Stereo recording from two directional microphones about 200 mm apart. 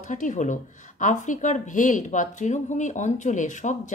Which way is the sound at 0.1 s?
40° left (ahead or behind).